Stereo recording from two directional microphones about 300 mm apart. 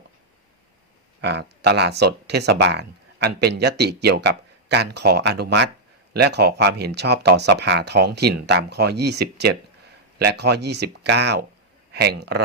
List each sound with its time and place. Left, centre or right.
1.2 s speech: right